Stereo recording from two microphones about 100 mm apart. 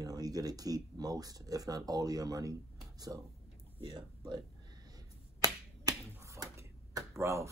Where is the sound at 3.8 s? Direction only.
55° right (ahead or behind).